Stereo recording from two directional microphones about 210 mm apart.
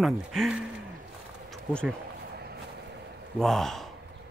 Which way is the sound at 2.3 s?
50° right (ahead or behind).